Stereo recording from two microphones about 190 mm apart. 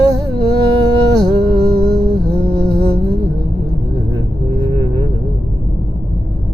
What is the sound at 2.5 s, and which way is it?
Music, 60° right (ahead or behind).